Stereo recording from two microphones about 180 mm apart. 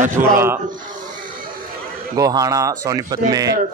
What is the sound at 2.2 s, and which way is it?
Speech, 20° right (ahead or behind).